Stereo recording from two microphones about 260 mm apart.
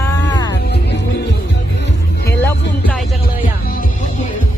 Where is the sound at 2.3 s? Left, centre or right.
Centre.